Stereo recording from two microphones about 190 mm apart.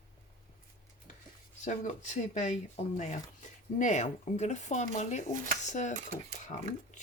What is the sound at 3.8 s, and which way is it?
Speech, 40° left (ahead or behind).